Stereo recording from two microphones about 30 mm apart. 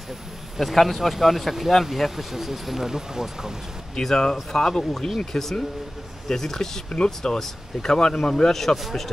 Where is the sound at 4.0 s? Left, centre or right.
Left.